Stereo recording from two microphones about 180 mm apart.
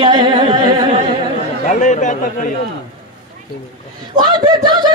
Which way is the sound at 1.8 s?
40° left (ahead or behind).